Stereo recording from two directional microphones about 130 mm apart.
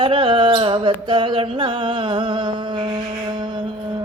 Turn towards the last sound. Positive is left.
turn(degrees=-35)  # may be behind; listen again after turning